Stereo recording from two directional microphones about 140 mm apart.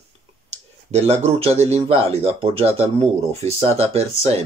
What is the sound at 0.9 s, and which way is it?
Speech, 50° right (ahead or behind).